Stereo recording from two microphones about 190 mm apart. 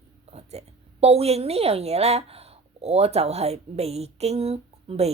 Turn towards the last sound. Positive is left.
turn(degrees=-30)  # may be behind; listen again after turning